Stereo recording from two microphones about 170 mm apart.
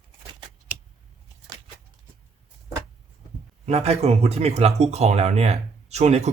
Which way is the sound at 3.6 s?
40° right (ahead or behind).